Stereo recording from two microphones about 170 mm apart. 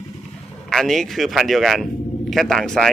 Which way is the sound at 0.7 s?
Centre (ahead or behind).